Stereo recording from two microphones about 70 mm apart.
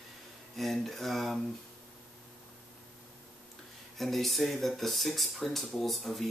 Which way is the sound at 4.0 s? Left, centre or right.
Centre.